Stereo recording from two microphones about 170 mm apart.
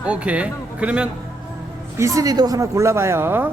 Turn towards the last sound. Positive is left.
turn(degrees=-15)  # may be behind; listen again after turning